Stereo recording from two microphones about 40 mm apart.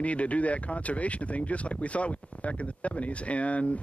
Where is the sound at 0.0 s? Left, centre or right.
Left.